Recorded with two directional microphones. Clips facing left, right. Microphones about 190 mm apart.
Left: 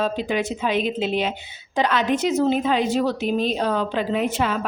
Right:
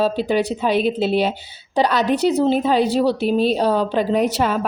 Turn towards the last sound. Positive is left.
turn(degrees=-40)  # may be behind; listen again after turning